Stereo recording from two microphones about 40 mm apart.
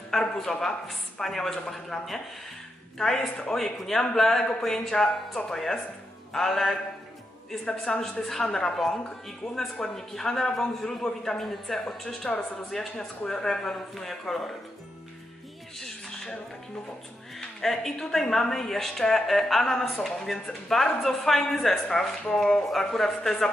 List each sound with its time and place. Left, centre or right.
0.1 s a man's voice: centre
15.8 s a sound: centre
17.6 s a man's voice: centre